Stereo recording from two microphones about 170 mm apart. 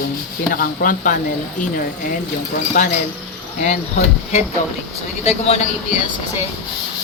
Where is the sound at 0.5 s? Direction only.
55° left (ahead or behind).